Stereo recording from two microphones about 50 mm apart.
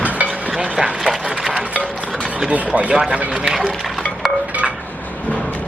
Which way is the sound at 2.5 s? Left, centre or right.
Right.